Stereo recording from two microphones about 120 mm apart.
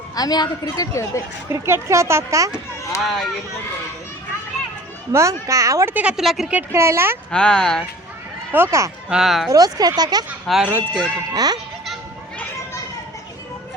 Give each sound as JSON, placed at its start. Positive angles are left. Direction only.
{"t": 0.2, "sound": "a woman's voice", "side_deg": 35}
{"t": 1.5, "sound": "speech", "side_deg": -25}
{"t": 3.0, "sound": "a woman's voice", "side_deg": 0}
{"t": 5.1, "sound": "speech", "side_deg": -25}
{"t": 5.9, "sound": "a woman's voice", "side_deg": -10}
{"t": 6.5, "sound": "speech", "side_deg": -15}
{"t": 7.3, "sound": "speech", "side_deg": 5}
{"t": 8.5, "sound": "speech", "side_deg": -20}
{"t": 9.0, "sound": "a woman's voice", "side_deg": -5}
{"t": 9.5, "sound": "speech", "side_deg": -30}
{"t": 10.4, "sound": "speech", "side_deg": 0}
{"t": 10.7, "sound": "speech", "side_deg": -15}
{"t": 11.3, "sound": "speech", "side_deg": -35}